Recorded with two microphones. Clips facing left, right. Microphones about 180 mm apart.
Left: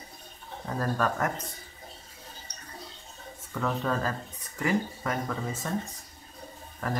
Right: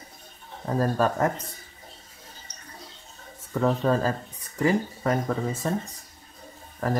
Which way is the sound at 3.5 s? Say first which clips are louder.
Right 6 dB; 35° right (ahead or behind).